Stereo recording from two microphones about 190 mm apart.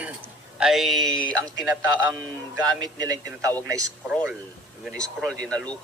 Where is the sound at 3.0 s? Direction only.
20° right (ahead or behind).